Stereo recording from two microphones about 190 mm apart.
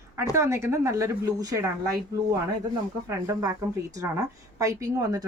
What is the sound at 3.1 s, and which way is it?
Speech, 15° right (ahead or behind).